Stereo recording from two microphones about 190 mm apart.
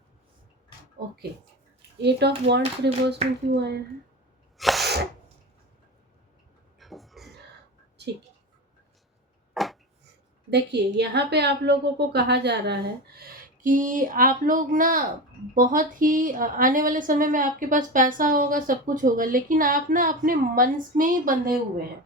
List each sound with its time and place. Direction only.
2.0 s a woman's voice: 60° right (ahead or behind)
4.5 s sneeze: centre (ahead or behind)
6.7 s a sound: centre (ahead or behind)
9.6 s a sound: centre (ahead or behind)
10.5 s a woman's voice: 60° right (ahead or behind)
13.1 s a woman's voice: 45° right (ahead or behind)